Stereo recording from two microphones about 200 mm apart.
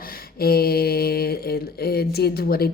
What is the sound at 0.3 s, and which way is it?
Mantra, 50° left (ahead or behind).